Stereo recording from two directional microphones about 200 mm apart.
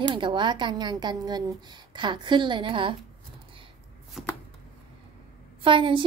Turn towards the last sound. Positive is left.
turn(degrees=-25)  # may be behind; listen again after turning